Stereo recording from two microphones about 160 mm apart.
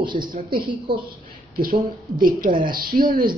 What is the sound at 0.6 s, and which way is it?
Speech, 30° right (ahead or behind).